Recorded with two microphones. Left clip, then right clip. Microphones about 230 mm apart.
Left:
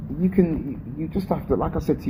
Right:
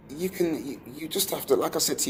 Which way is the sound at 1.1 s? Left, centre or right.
Right.